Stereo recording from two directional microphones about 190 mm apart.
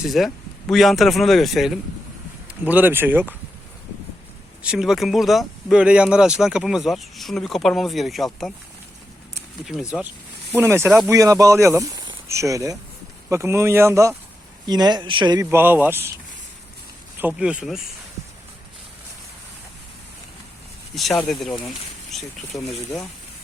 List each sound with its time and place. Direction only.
0.0 s speech: centre (ahead or behind)
4.6 s speech: 5° right (ahead or behind)
10.6 s speech: 10° right (ahead or behind)
15.4 s speech: 10° right (ahead or behind)
17.2 s speech: 5° right (ahead or behind)
20.9 s speech: centre (ahead or behind)